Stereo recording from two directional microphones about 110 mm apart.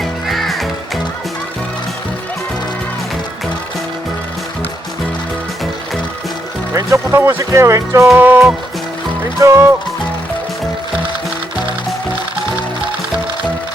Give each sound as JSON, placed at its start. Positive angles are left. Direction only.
{"t": 0.0, "sound": "music", "side_deg": 0}
{"t": 6.7, "sound": "speech", "side_deg": -25}
{"t": 8.0, "sound": "music", "side_deg": -10}
{"t": 9.4, "sound": "speech", "side_deg": -25}